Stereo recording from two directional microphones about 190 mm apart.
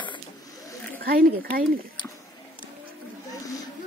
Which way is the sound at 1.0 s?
50° right (ahead or behind).